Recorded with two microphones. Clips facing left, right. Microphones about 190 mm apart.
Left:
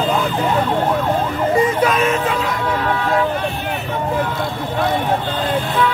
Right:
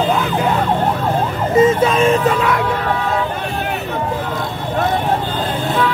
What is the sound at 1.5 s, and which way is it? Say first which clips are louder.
Emergency vehicle: right 5 dB; 25° right (ahead or behind).